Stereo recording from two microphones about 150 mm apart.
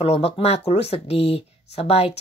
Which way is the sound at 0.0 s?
40° left (ahead or behind).